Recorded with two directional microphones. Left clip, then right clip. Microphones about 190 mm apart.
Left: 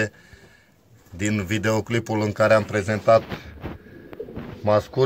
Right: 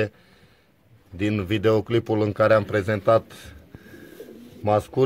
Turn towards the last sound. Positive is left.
turn(degrees=-40)  # may be behind; listen again after turning